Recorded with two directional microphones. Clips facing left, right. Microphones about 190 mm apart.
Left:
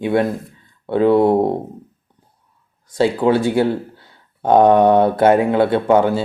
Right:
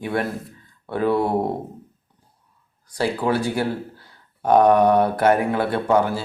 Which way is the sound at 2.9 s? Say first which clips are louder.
Left 6 dB; 25° left (ahead or behind).